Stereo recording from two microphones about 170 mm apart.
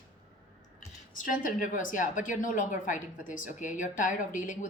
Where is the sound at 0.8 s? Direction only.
50° left (ahead or behind).